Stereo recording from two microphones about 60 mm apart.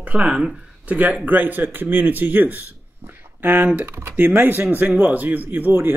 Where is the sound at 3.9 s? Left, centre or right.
Right.